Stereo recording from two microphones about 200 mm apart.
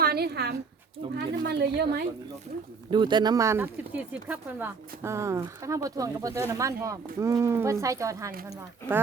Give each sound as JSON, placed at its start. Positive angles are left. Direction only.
{"t": 0.0, "sound": "speech", "side_deg": -50}
{"t": 2.9, "sound": "speech", "side_deg": -20}